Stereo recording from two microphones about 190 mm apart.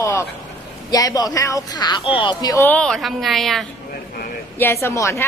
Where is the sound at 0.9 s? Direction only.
20° left (ahead or behind); by 3.7 s centre (ahead or behind).